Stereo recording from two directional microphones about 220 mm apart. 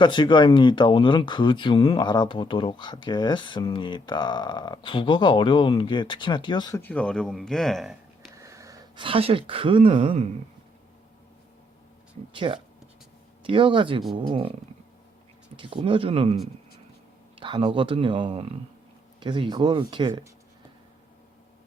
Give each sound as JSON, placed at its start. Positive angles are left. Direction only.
{"t": 0.0, "sound": "speech", "side_deg": 20}
{"t": 8.4, "sound": "speech", "side_deg": -15}
{"t": 12.3, "sound": "speech", "side_deg": -20}
{"t": 15.5, "sound": "speech", "side_deg": -25}
{"t": 17.4, "sound": "speech", "side_deg": -20}